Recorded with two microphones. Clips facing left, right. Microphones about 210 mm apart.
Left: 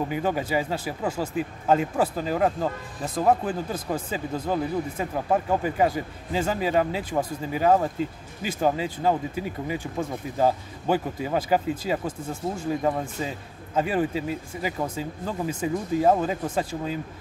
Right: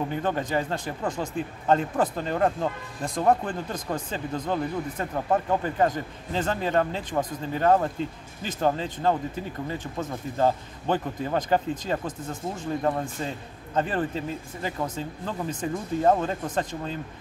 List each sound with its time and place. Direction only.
0.1 s speech: 10° left (ahead or behind)